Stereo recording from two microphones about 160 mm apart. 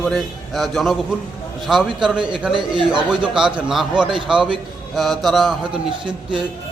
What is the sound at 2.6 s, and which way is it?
Speech, 30° right (ahead or behind).